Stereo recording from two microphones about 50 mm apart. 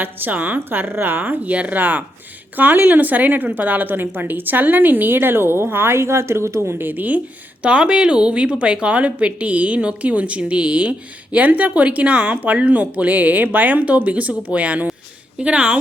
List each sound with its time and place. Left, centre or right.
0.0 s a woman's voice: right
6.8 s a woman's voice: right
7.6 s a woman's voice: right